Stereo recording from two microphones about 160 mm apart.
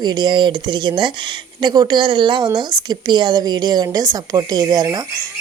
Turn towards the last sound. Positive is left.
turn(degrees=-25)  # may be behind; listen again after turning